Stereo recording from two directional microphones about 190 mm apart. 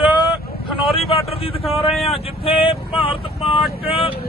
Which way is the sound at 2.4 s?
30° left (ahead or behind).